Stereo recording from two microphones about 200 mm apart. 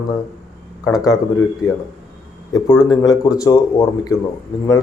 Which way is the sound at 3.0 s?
15° left (ahead or behind).